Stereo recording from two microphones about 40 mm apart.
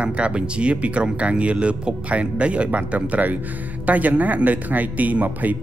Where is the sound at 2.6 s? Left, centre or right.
Right.